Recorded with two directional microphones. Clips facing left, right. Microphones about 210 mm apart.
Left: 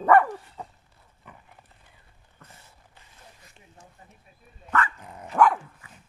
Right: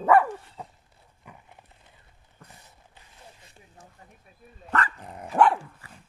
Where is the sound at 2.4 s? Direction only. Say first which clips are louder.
Right 1 dB; 15° right (ahead or behind).